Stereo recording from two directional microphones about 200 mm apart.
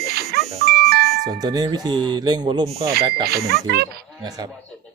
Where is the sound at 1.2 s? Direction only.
20° right (ahead or behind).